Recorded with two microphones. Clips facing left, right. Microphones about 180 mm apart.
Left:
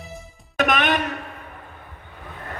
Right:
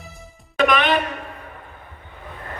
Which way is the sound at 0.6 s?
45° left (ahead or behind).